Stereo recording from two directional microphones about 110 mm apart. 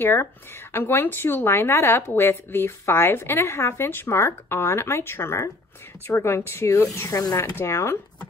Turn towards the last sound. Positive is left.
turn(degrees=25)  # may be behind; listen again after turning